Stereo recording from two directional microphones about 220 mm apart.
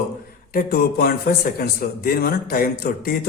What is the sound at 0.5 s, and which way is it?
A man's voice, 45° left (ahead or behind).